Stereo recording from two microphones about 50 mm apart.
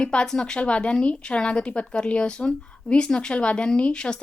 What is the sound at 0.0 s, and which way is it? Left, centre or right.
Speech, centre.